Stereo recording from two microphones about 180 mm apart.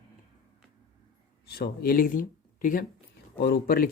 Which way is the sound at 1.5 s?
55° left (ahead or behind).